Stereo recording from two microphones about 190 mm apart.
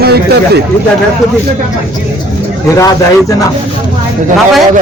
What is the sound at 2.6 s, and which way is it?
Speech, 15° left (ahead or behind).